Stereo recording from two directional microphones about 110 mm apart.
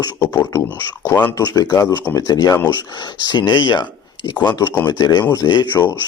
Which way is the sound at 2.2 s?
35° left (ahead or behind).